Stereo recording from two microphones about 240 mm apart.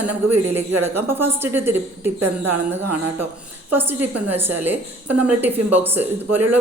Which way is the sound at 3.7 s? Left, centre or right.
Centre.